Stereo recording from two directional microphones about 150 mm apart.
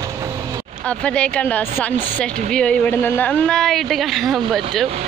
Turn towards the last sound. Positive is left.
turn(degrees=0)  # may be behind; listen again after turning